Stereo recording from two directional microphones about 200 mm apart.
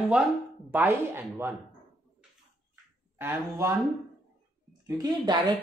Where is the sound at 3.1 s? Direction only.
10° right (ahead or behind).